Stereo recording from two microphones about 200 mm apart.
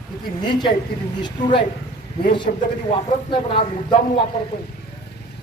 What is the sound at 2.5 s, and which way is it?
Speech, 45° left (ahead or behind).